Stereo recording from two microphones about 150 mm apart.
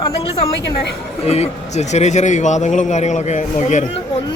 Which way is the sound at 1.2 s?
45° left (ahead or behind).